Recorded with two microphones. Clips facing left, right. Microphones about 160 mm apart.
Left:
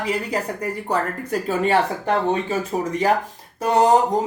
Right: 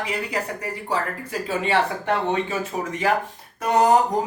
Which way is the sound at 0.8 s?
45° left (ahead or behind).